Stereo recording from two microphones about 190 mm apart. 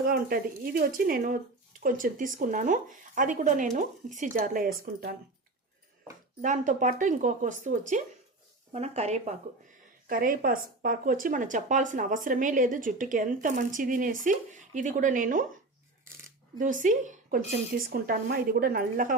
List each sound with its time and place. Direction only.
0.0 s speech: 50° right (ahead or behind)
6.4 s speech: 40° right (ahead or behind)
10.1 s speech: 45° right (ahead or behind)
16.6 s speech: 45° right (ahead or behind)